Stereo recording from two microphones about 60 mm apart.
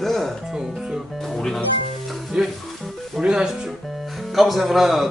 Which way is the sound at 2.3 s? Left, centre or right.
Centre.